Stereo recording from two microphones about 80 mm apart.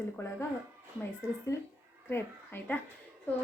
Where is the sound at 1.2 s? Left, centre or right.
Left.